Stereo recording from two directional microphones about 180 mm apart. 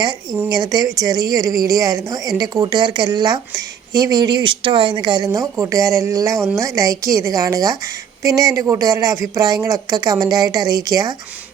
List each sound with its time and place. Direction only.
0.4 s a woman's voice: 20° right (ahead or behind)